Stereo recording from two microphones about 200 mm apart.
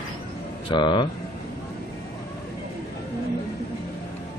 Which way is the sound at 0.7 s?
20° left (ahead or behind).